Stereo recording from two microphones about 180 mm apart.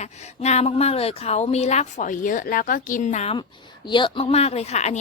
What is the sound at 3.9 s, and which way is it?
A woman's voice, 25° left (ahead or behind).